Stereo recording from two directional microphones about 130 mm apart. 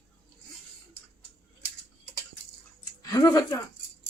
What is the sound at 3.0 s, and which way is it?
Speech, 30° left (ahead or behind).